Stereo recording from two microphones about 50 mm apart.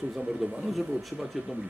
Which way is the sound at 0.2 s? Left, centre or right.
Centre.